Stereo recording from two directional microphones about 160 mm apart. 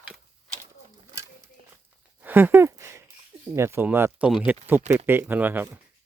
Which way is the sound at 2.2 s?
10° right (ahead or behind).